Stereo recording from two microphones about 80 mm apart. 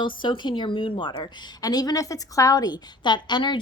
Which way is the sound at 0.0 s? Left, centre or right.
Left.